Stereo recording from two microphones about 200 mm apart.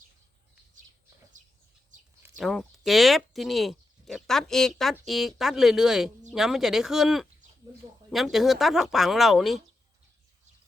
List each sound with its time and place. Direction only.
1.9 s bird: 40° right (ahead or behind)
2.4 s speech: centre (ahead or behind)